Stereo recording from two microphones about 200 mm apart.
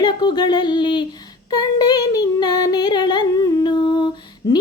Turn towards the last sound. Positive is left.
turn(degrees=20)  # may be behind; listen again after turning